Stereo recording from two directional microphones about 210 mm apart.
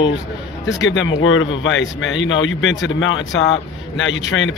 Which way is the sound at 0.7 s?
60° left (ahead or behind).